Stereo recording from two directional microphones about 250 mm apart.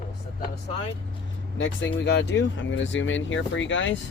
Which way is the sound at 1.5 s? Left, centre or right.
Left.